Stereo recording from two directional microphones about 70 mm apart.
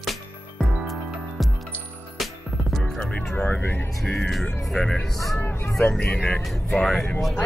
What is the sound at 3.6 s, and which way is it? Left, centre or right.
Speech, left.